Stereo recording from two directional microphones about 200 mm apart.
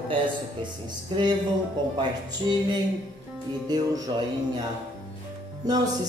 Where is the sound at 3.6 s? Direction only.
20° right (ahead or behind).